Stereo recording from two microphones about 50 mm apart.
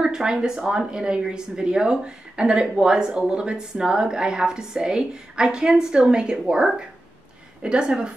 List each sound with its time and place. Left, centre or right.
0.0 s a woman's voice: centre